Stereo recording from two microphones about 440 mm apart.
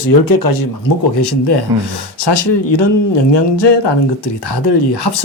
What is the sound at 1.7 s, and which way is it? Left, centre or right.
Speech, right.